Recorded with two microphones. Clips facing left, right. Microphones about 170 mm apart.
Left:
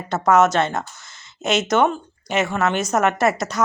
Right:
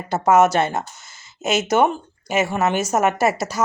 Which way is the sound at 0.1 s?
10° right (ahead or behind).